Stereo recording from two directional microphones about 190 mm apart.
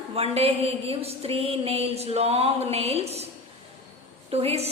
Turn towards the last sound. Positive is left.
turn(degrees=-35)  # may be behind; listen again after turning